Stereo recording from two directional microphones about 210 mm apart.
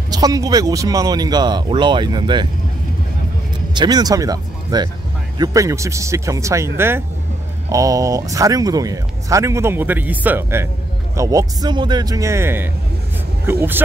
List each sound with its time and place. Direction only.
0.1 s speech: 15° right (ahead or behind)
3.7 s speech: 20° right (ahead or behind)